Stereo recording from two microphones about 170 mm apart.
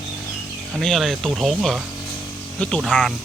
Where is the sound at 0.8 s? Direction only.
Centre (ahead or behind).